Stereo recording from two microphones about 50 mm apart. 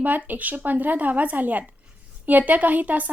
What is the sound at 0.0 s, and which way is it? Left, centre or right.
Speech, right.